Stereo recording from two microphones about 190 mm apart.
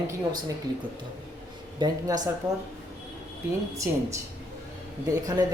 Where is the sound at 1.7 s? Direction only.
20° right (ahead or behind).